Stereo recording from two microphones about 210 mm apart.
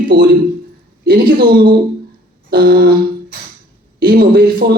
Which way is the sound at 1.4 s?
45° right (ahead or behind).